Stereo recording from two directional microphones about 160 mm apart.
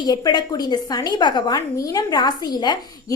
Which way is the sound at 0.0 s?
25° left (ahead or behind).